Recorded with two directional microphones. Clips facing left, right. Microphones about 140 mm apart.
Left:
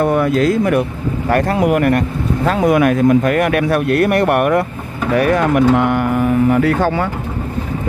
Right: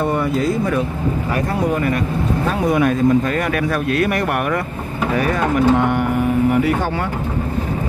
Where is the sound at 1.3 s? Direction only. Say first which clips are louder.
Left 8 dB; 80° left; by 4.6 s 55° left (ahead or behind).